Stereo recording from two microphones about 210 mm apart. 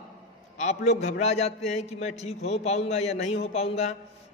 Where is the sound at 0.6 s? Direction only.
35° left (ahead or behind).